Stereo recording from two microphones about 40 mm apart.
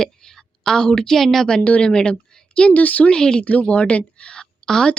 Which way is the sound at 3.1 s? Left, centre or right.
Centre.